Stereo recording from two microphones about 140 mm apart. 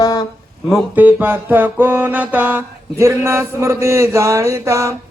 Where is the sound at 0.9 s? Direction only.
15° right (ahead or behind).